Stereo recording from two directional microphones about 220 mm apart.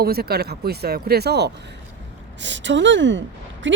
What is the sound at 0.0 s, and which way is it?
Speech, 45° right (ahead or behind).